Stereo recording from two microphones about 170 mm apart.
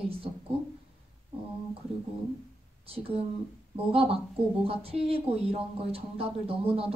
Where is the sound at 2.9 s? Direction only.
35° right (ahead or behind).